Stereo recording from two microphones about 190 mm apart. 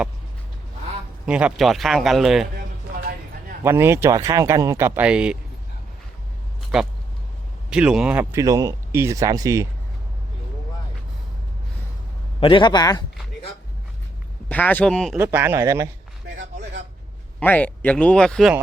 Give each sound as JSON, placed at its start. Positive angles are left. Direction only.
{"t": 1.2, "sound": "a man's voice", "side_deg": -5}
{"t": 3.6, "sound": "speech", "side_deg": -15}
{"t": 7.7, "sound": "speech", "side_deg": -5}
{"t": 12.4, "sound": "a man's voice", "side_deg": 25}
{"t": 14.5, "sound": "a man's voice", "side_deg": 10}
{"t": 15.2, "sound": "speech", "side_deg": -10}
{"t": 17.4, "sound": "a man's voice", "side_deg": 10}